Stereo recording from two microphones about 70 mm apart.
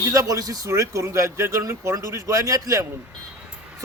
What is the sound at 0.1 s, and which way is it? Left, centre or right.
Speech, right.